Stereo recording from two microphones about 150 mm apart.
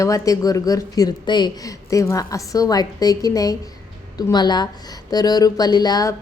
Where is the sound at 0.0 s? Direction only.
20° left (ahead or behind).